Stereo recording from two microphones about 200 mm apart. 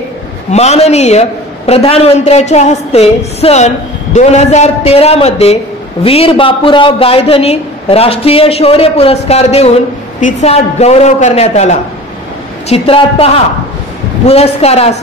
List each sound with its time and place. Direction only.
0.5 s a man's voice: 35° left (ahead or behind)